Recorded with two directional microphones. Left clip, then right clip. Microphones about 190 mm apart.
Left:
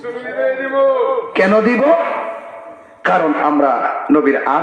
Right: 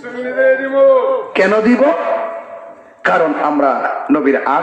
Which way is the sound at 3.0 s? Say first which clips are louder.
Right 1 dB; 45° right (ahead or behind).